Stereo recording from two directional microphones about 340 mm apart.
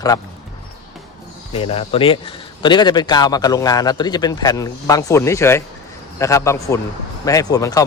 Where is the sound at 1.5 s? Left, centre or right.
Centre.